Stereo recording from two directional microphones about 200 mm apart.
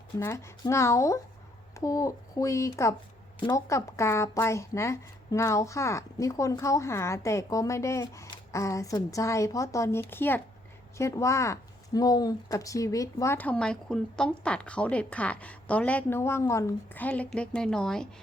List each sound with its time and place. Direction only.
0.2 s a woman's voice: 15° left (ahead or behind)